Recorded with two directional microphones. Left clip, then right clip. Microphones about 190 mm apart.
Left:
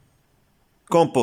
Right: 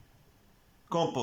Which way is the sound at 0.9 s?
65° left (ahead or behind).